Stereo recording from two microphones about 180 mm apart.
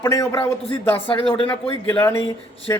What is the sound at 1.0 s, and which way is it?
Speech, 30° left (ahead or behind).